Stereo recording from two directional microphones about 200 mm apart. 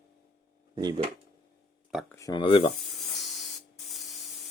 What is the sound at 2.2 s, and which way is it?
Speech, 20° left (ahead or behind).